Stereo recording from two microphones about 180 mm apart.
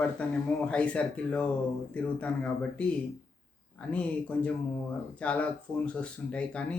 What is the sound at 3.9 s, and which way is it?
Speech, 5° left (ahead or behind).